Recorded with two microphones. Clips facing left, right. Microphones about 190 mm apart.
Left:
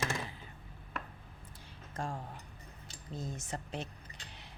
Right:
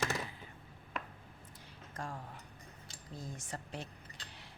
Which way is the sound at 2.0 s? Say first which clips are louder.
Left 4 dB; 25° left (ahead or behind).